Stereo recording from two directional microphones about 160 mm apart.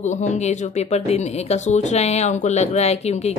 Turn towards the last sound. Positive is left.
turn(degrees=40)  # may be behind; listen again after turning